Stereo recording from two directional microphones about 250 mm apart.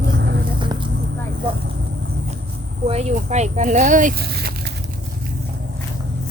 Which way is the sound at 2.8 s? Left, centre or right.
Right.